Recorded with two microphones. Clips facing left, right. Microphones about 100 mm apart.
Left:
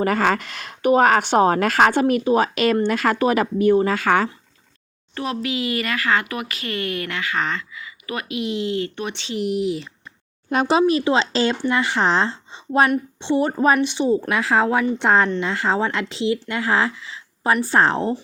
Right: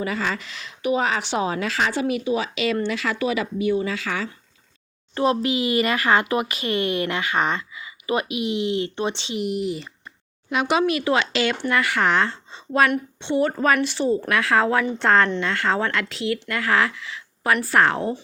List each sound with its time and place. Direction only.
0.0 s a woman's voice: 55° left (ahead or behind)
5.1 s speech: 25° right (ahead or behind)
9.4 s speech: centre (ahead or behind)
10.5 s speech: 35° left (ahead or behind)
14.6 s speech: 10° left (ahead or behind); by 18.2 s 30° left (ahead or behind)